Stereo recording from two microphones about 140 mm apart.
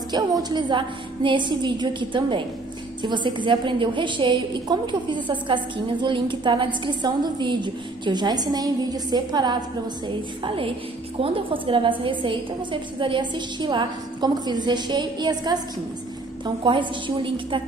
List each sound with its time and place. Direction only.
0.1 s a woman's voice: 30° right (ahead or behind)